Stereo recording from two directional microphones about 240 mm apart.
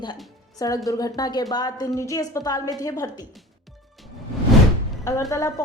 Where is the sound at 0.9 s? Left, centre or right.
Centre.